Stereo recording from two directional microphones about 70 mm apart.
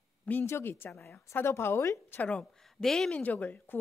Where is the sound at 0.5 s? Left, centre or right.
Left.